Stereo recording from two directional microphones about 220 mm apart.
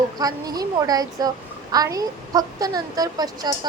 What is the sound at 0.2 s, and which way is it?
Speech, 15° right (ahead or behind).